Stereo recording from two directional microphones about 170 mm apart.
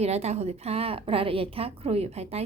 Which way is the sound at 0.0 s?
40° right (ahead or behind).